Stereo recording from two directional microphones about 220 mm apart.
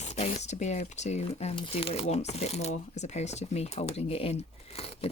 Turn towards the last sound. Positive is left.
turn(degrees=25)  # may be behind; listen again after turning